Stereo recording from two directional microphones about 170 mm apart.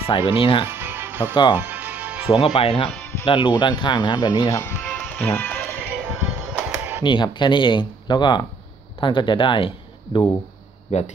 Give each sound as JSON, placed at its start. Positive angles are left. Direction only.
{"t": 0.0, "sound": "speech", "side_deg": 30}
{"t": 0.7, "sound": "music", "side_deg": -10}
{"t": 2.3, "sound": "speech", "side_deg": 30}
{"t": 2.9, "sound": "music", "side_deg": 10}
{"t": 3.3, "sound": "speech", "side_deg": 30}
{"t": 4.9, "sound": "music", "side_deg": 15}
{"t": 6.4, "sound": "music", "side_deg": -5}
{"t": 7.0, "sound": "speech", "side_deg": 30}